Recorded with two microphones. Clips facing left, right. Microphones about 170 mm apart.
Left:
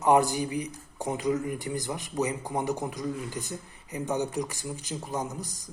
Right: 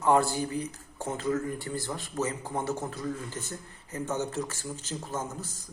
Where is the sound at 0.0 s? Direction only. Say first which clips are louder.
Left 2 dB; 15° left (ahead or behind).